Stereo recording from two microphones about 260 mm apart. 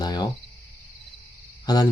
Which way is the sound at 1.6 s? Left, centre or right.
Centre.